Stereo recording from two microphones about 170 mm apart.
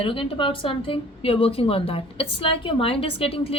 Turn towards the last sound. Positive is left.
turn(degrees=35)  # may be behind; listen again after turning